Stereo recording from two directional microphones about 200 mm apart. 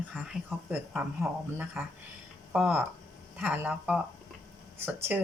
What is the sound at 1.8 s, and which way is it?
Speech, 10° right (ahead or behind).